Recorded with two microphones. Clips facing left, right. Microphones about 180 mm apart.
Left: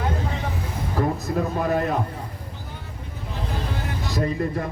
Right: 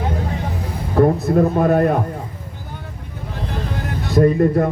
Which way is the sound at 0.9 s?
50° right (ahead or behind).